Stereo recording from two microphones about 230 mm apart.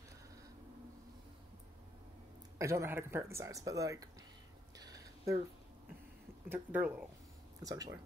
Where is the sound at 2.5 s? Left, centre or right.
Centre.